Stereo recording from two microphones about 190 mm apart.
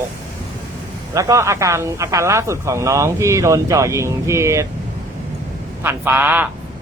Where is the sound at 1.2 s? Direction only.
15° right (ahead or behind).